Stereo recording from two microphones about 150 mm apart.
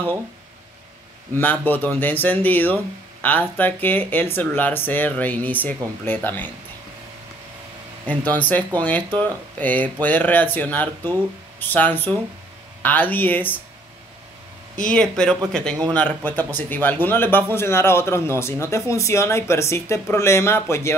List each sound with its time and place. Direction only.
1.3 s a man's voice: 10° left (ahead or behind)
8.3 s a man's voice: 10° left (ahead or behind)
14.8 s a man's voice: 5° left (ahead or behind)